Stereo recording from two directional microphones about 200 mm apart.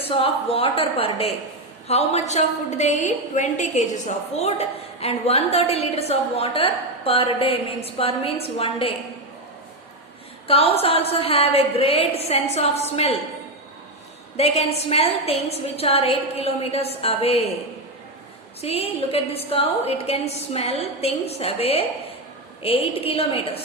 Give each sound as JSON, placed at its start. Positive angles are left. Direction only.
{"t": 0.0, "sound": "a woman's voice", "side_deg": 30}
{"t": 10.4, "sound": "a woman's voice", "side_deg": 30}
{"t": 14.3, "sound": "a woman's voice", "side_deg": 30}
{"t": 18.6, "sound": "a woman's voice", "side_deg": 30}